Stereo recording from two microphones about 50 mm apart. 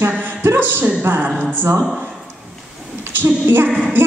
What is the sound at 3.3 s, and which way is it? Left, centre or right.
Speech, right.